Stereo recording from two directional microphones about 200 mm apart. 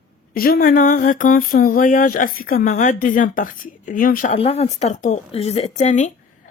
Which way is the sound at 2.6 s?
40° left (ahead or behind).